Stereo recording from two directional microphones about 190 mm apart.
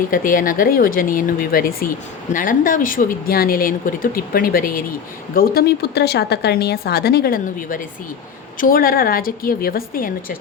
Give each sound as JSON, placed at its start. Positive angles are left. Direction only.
{"t": 0.1, "sound": "a woman's voice", "side_deg": 45}